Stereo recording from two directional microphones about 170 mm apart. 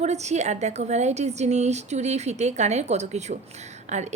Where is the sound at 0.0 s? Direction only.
40° right (ahead or behind).